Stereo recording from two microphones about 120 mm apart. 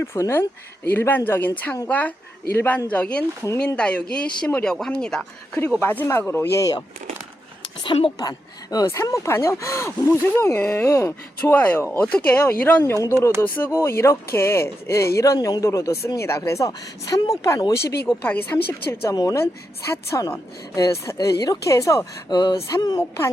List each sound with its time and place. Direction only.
0.0 s speech: 20° left (ahead or behind)
5.8 s speech: 20° left (ahead or behind)
8.2 s speech: 30° left (ahead or behind)